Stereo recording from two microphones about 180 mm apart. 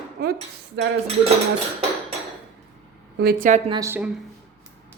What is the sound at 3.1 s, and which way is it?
Speech, 55° right (ahead or behind).